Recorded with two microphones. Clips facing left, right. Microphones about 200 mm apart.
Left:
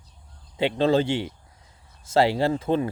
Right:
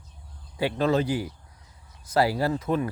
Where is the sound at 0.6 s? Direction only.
25° left (ahead or behind).